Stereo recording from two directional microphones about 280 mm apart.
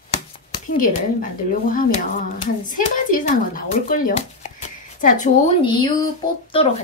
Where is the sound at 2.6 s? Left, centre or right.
Left.